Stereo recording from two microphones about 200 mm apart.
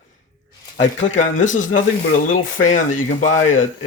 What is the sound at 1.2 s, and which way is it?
Speech, 40° left (ahead or behind).